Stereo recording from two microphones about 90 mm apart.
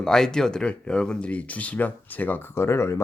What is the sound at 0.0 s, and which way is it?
Speech, 5° left (ahead or behind).